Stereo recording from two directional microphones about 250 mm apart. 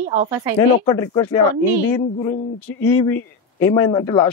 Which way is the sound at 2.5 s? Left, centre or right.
Centre.